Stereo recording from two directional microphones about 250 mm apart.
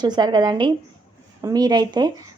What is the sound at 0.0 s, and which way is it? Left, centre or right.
A woman's voice, centre.